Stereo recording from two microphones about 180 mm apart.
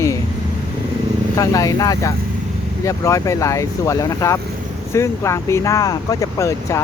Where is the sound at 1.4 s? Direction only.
20° left (ahead or behind).